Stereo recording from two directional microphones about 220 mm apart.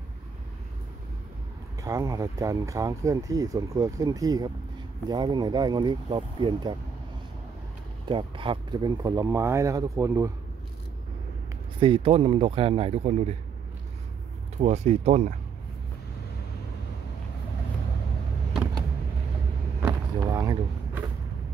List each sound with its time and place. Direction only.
1.8 s speech: 15° right (ahead or behind)
8.1 s speech: 25° right (ahead or behind)
11.8 s speech: 25° right (ahead or behind)
14.6 s speech: 30° right (ahead or behind)
19.8 s vehicle: 15° right (ahead or behind)